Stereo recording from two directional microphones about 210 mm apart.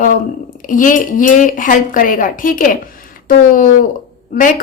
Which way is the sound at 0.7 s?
40° left (ahead or behind).